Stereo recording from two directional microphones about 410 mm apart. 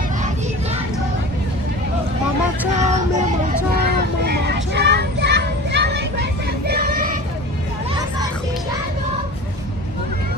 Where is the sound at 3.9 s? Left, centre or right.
Right.